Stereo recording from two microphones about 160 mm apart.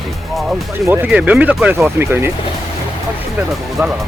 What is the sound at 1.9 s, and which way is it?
Speech, 15° right (ahead or behind).